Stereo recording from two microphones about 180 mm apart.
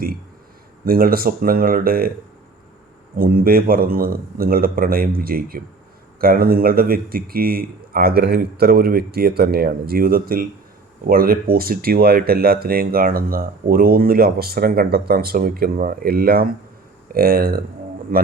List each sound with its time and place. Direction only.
0.9 s speech: 55° right (ahead or behind)
3.2 s speech: 55° right (ahead or behind)